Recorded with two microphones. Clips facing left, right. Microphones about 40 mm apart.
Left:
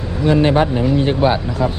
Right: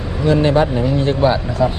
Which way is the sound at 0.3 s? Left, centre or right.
Left.